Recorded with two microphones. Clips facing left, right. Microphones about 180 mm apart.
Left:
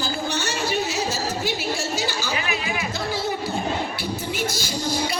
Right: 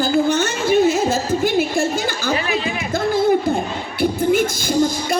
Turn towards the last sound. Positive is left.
turn(degrees=-50)  # may be behind; listen again after turning